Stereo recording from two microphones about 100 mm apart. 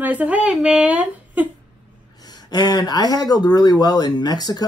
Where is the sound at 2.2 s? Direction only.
40° left (ahead or behind).